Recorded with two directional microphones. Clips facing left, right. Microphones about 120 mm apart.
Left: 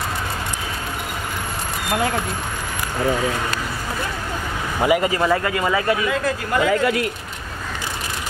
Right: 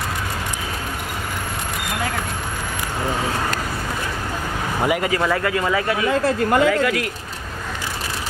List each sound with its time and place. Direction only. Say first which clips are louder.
4.8 s speech: left 3 dB; 5° left (ahead or behind)
6.0 s speech: right 4 dB; 30° right (ahead or behind)
6.6 s speech: even; 25° left (ahead or behind)